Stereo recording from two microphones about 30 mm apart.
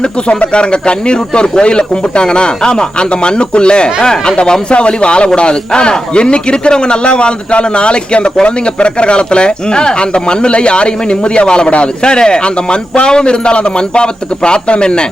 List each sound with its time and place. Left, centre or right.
0.3 s speech: left
4.7 s speech: left